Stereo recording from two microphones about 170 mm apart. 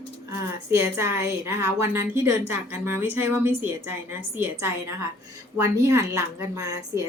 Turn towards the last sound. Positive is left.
turn(degrees=-20)  # may be behind; listen again after turning